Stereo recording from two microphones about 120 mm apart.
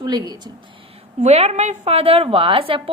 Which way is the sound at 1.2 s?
60° right (ahead or behind).